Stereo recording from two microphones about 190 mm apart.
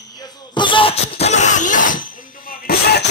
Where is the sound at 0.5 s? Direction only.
25° left (ahead or behind).